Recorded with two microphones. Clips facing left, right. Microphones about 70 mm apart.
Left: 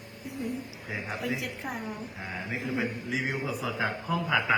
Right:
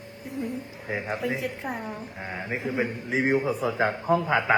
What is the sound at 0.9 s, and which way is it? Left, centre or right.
Speech, right.